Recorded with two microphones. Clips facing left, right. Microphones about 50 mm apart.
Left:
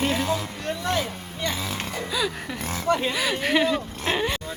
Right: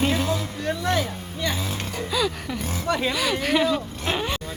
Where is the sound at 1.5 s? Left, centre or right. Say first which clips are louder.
Right 1 dB; left.